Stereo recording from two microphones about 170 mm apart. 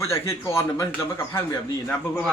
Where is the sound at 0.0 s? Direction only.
15° left (ahead or behind).